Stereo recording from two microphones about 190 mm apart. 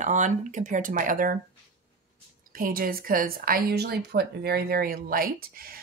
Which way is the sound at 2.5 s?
50° right (ahead or behind).